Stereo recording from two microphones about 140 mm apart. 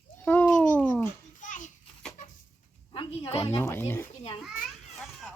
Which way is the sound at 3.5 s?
15° left (ahead or behind).